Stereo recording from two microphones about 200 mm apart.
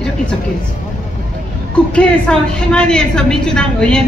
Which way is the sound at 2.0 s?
5° left (ahead or behind).